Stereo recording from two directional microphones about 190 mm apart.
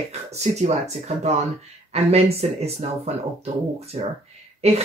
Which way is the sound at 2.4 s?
35° right (ahead or behind).